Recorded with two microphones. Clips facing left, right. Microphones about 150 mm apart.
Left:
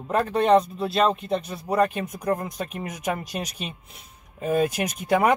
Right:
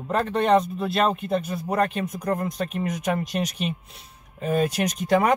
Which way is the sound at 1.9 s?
10° left (ahead or behind).